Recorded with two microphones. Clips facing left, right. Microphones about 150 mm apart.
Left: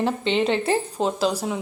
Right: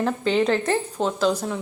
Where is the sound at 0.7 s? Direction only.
35° left (ahead or behind).